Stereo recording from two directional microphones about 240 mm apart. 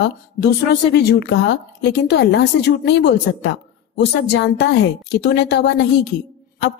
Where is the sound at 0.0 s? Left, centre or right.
Left.